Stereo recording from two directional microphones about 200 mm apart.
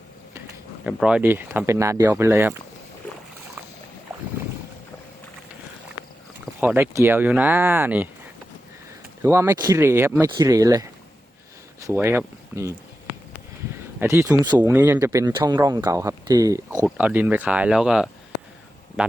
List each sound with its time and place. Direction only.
0.9 s speech: 5° right (ahead or behind)
6.4 s speech: 5° right (ahead or behind)
9.2 s speech: 15° right (ahead or behind)
11.9 s speech: 10° right (ahead or behind)
14.0 s speech: 10° right (ahead or behind)
16.8 s speech: 5° right (ahead or behind)